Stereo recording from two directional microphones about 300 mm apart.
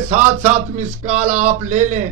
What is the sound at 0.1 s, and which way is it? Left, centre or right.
A man's voice, right.